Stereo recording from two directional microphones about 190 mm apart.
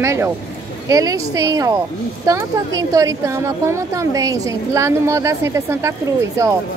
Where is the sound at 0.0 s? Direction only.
15° right (ahead or behind).